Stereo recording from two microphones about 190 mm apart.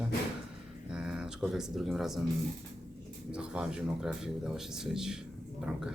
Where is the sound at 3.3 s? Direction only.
5° right (ahead or behind).